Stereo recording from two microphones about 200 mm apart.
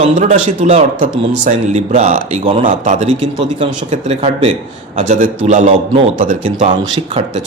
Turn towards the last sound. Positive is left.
turn(degrees=-25)  # may be behind; listen again after turning